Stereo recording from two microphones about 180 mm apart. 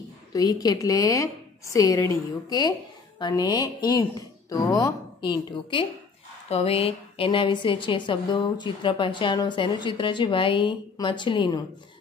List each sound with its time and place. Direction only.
0.3 s a woman's voice: 20° left (ahead or behind)